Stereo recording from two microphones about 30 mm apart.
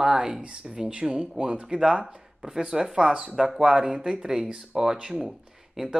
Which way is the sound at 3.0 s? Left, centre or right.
Right.